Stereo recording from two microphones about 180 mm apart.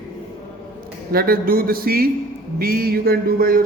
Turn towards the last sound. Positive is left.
turn(degrees=-55)  # may be behind; listen again after turning